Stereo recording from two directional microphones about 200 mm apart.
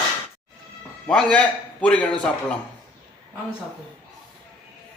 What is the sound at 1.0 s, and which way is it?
A man's voice, 5° left (ahead or behind).